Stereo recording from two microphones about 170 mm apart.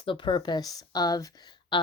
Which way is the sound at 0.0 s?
30° left (ahead or behind).